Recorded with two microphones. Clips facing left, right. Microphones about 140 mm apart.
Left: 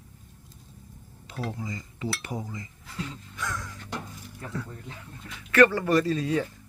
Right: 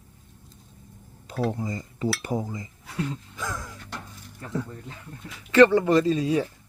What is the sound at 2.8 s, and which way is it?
Speech, 65° right (ahead or behind).